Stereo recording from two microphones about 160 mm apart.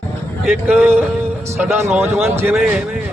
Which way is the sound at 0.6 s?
10° right (ahead or behind).